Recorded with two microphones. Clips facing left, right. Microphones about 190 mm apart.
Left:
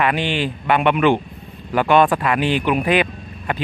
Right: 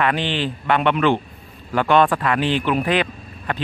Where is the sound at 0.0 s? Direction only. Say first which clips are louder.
Left 1 dB; 10° left (ahead or behind).